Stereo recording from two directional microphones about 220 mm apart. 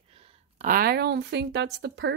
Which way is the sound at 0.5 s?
40° right (ahead or behind).